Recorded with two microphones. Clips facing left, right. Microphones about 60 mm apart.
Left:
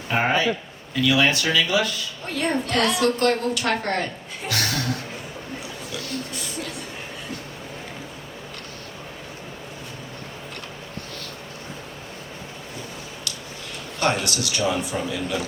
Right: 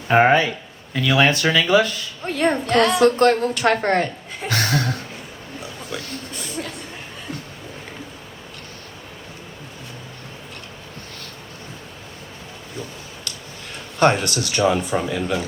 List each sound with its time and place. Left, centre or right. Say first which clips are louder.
0.1 s a man's voice: right 8 dB; right
0.9 s a woman's voice: right 2 dB; right
5.9 s a sound: left 1 dB; right
14.0 s a woman's voice: right 6 dB; right